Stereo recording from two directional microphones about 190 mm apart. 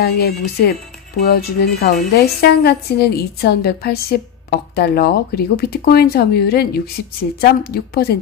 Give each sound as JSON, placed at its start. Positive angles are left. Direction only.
{"t": 0.0, "sound": "speech", "side_deg": 55}